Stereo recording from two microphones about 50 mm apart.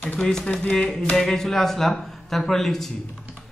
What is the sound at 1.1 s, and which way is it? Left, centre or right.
Speech, centre.